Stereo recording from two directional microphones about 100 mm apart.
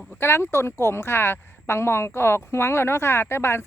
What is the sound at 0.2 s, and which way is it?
A woman's voice, 25° left (ahead or behind).